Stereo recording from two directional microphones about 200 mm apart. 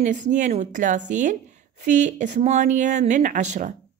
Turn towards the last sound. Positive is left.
turn(degrees=-35)  # may be behind; listen again after turning